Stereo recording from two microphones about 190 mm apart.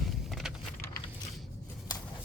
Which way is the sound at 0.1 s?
Centre (ahead or behind).